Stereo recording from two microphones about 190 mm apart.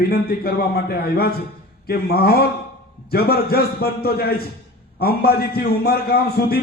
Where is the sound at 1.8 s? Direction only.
55° left (ahead or behind).